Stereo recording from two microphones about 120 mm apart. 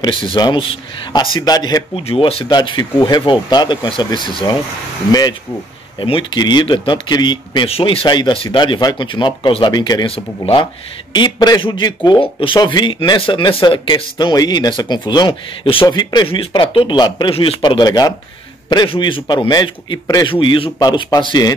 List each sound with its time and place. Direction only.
0.0 s speech: 45° left (ahead or behind)
2.0 s speech: 50° left (ahead or behind)
2.5 s speech: 40° left (ahead or behind)
5.9 s speech: 45° left (ahead or behind)
10.0 s speech: 50° left (ahead or behind)
11.1 s speech: 35° left (ahead or behind)
12.2 s speech: 45° left (ahead or behind)